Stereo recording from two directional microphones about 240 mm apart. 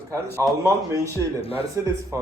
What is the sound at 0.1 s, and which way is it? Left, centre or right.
Speech, centre.